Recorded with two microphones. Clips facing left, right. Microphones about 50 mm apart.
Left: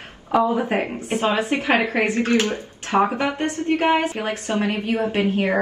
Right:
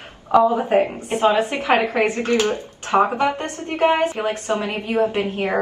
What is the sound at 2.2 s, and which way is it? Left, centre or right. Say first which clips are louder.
A woman's voice: right 1 dB; left.